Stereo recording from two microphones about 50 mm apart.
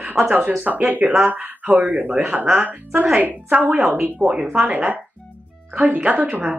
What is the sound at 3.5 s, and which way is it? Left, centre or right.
Speech, right.